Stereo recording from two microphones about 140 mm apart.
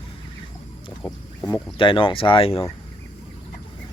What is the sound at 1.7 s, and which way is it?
Speech, 35° left (ahead or behind).